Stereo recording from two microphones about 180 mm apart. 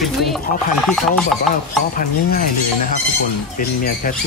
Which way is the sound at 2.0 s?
55° left (ahead or behind).